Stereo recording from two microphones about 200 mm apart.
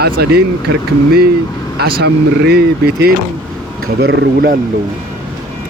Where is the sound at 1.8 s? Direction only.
50° right (ahead or behind).